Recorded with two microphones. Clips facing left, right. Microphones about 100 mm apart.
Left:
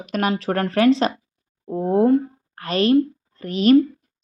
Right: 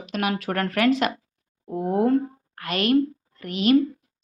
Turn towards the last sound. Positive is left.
turn(degrees=35)  # may be behind; listen again after turning